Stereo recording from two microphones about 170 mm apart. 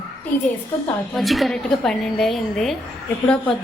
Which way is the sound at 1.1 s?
Centre (ahead or behind).